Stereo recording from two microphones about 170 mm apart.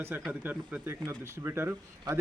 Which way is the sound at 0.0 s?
10° right (ahead or behind).